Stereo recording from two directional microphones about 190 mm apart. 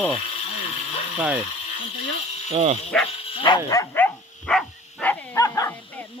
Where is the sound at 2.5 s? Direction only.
35° right (ahead or behind).